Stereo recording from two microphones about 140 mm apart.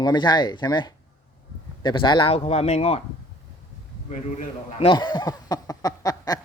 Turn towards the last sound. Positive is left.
turn(degrees=25)  # may be behind; listen again after turning